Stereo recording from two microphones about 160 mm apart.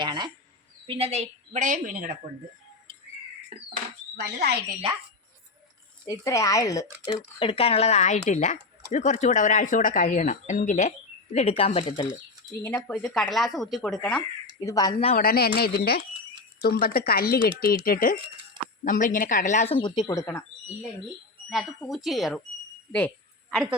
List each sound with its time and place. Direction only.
0.0 s a sound: 30° right (ahead or behind)
0.9 s a woman's voice: 40° right (ahead or behind); by 2.0 s 55° right (ahead or behind)
4.2 s speech: 90° right
6.1 s speech: 20° left (ahead or behind)
7.0 s speech: 35° left (ahead or behind)
12.6 s speech: 10° left (ahead or behind)
14.6 s speech: 20° left (ahead or behind)
15.1 s speech: 65° left (ahead or behind)
18.9 s speech: 55° left (ahead or behind); by 20.4 s 15° left (ahead or behind)
21.5 s speech: centre (ahead or behind)
22.9 s a sound: 10° left (ahead or behind)